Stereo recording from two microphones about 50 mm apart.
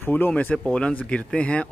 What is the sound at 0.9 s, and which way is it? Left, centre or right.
Speech, left.